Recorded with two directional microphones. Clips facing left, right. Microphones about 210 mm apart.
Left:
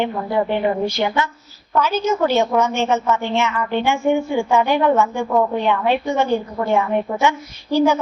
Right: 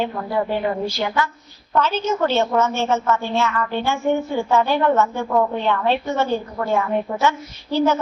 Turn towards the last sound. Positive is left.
turn(degrees=10)  # may be behind; listen again after turning